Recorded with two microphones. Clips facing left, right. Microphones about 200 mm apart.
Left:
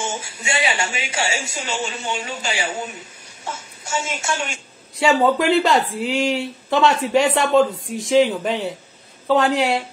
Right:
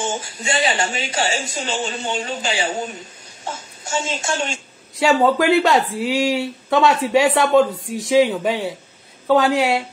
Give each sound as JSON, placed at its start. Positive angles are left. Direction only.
{"t": 0.2, "sound": "speech", "side_deg": 10}
{"t": 0.6, "sound": "speech", "side_deg": -40}
{"t": 1.2, "sound": "speech", "side_deg": 10}
{"t": 1.5, "sound": "a woman's voice", "side_deg": -25}
{"t": 2.2, "sound": "speech", "side_deg": -40}
{"t": 2.5, "sound": "a woman's voice", "side_deg": -25}
{"t": 4.9, "sound": "speech", "side_deg": 0}